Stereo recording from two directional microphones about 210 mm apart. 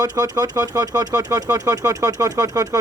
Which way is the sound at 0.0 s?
15° right (ahead or behind).